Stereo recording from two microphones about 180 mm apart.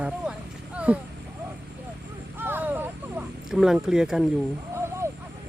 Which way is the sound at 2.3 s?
10° right (ahead or behind).